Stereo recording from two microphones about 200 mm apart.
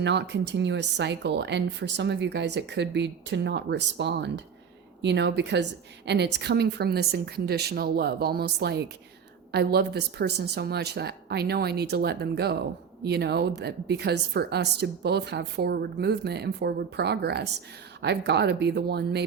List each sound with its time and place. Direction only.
0.0 s speech: 60° right (ahead or behind)